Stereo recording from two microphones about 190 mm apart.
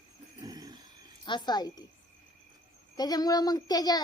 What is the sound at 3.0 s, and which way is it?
Speech, 20° left (ahead or behind).